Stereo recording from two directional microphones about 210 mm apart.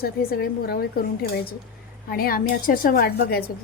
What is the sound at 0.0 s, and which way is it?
Speech, 45° left (ahead or behind).